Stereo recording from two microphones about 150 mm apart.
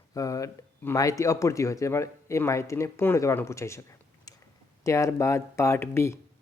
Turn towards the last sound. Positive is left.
turn(degrees=20)  # may be behind; listen again after turning